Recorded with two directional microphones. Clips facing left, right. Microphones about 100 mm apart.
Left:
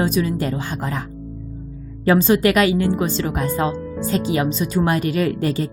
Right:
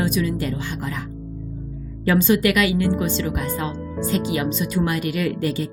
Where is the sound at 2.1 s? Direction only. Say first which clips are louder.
Left 3 dB; 35° left (ahead or behind).